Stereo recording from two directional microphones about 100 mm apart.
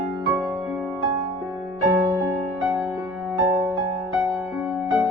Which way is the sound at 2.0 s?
40° right (ahead or behind).